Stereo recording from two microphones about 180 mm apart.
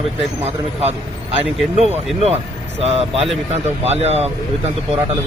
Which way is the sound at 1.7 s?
35° right (ahead or behind).